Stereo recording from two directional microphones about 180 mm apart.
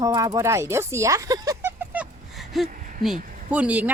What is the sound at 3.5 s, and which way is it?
Speech, 10° right (ahead or behind).